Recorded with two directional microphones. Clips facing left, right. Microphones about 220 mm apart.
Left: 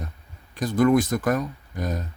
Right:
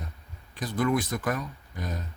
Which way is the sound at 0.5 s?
45° left (ahead or behind).